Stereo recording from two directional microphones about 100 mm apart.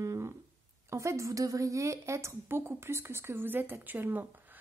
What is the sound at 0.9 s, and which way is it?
A woman's voice, 30° right (ahead or behind).